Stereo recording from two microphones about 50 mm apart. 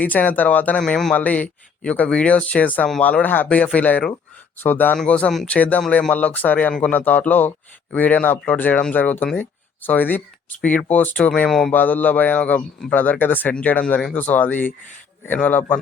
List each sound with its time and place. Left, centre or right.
0.0 s speech: left
0.8 s a man's voice: centre
1.1 s speech: left
4.6 s speech: left
5.0 s speech: left
6.1 s speech: left
11.4 s a man's voice: centre
11.7 s speech: left